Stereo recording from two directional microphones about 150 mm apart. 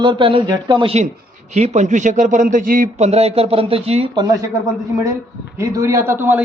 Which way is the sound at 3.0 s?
45° right (ahead or behind).